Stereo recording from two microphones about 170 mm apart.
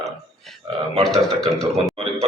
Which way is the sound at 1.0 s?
Centre (ahead or behind).